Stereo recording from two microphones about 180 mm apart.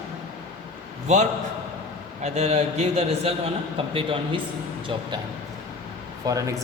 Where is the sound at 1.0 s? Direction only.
40° right (ahead or behind).